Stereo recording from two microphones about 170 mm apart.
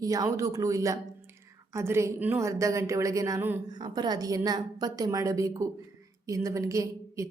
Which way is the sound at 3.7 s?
25° right (ahead or behind).